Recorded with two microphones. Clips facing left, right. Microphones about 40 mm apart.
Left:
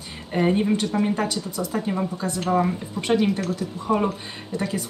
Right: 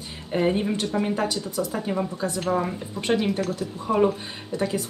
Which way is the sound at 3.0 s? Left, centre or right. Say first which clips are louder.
Left 2 dB; centre.